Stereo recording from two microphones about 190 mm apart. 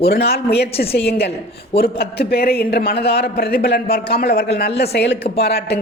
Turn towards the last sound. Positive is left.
turn(degrees=60)  # may be behind; listen again after turning